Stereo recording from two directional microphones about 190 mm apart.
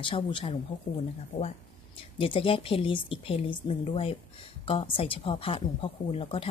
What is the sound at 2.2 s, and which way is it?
A woman's voice, 30° left (ahead or behind).